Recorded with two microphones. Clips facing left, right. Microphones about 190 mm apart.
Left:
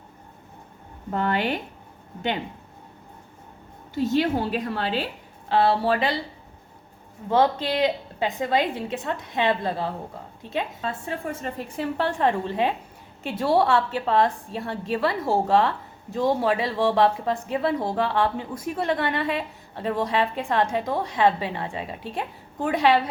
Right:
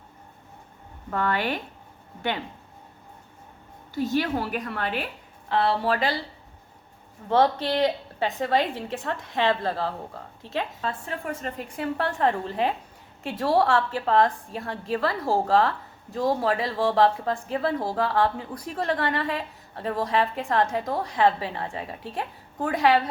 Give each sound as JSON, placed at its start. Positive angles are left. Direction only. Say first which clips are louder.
{"t": 1.1, "sound": "a woman's voice", "louder": "left 2 dB", "side_deg": 20}
{"t": 3.9, "sound": "a woman's voice", "louder": "left 3 dB", "side_deg": 25}
{"t": 7.3, "sound": "a woman's voice", "louder": "even", "side_deg": 15}